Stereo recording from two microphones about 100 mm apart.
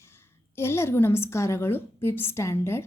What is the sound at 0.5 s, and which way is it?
A woman's voice, 25° left (ahead or behind).